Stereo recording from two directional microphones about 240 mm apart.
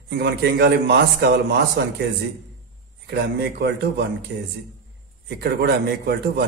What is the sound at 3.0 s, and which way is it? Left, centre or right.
Speech, right.